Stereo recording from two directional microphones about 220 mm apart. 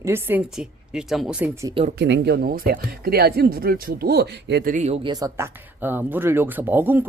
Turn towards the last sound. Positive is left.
turn(degrees=-10)  # may be behind; listen again after turning